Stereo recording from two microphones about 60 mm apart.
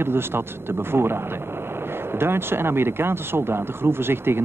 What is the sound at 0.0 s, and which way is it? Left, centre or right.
Speech, right.